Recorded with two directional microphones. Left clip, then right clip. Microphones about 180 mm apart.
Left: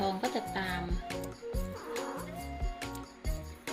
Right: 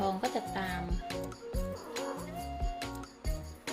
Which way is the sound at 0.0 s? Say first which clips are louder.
Even; centre (ahead or behind).